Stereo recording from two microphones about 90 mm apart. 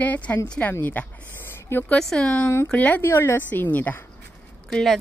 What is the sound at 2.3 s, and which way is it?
A woman's voice, 25° left (ahead or behind).